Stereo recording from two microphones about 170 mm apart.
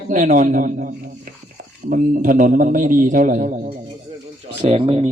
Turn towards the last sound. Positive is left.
turn(degrees=-35)  # may be behind; listen again after turning